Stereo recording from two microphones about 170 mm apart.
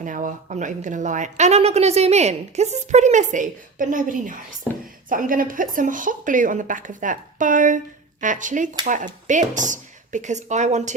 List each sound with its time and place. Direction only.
0.0 s speech: 50° right (ahead or behind)